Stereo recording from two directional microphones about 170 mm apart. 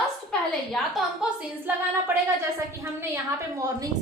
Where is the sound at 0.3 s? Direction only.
Centre (ahead or behind).